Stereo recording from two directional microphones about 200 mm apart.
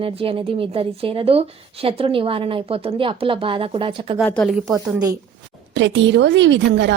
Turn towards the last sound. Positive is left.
turn(degrees=-60)  # may be behind; listen again after turning